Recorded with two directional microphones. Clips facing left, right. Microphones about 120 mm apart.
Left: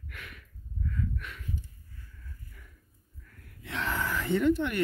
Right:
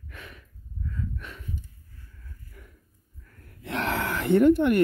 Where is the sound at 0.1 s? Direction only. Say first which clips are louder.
Right 4 dB; 25° right (ahead or behind).